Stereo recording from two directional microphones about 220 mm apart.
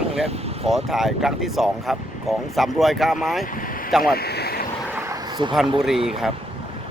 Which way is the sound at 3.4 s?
40° left (ahead or behind).